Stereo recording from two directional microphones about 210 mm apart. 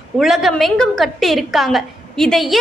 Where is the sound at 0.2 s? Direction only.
Centre (ahead or behind).